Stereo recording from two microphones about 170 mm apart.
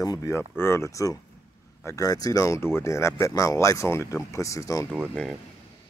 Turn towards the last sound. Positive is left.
turn(degrees=5)  # may be behind; listen again after turning